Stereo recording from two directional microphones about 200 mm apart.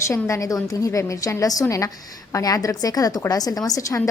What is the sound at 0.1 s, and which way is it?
A woman's voice, 15° left (ahead or behind).